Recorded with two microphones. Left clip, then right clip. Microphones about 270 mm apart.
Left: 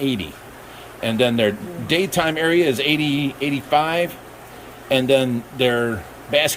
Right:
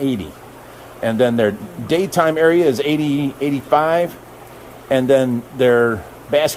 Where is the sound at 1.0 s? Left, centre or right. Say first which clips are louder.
Right 3 dB; centre.